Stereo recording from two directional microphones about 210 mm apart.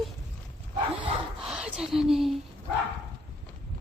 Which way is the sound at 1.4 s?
5° right (ahead or behind).